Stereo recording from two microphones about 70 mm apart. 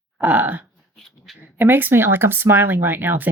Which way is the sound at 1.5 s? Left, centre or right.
Right.